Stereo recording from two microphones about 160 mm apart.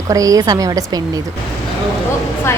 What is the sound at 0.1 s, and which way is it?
Speech, 20° right (ahead or behind).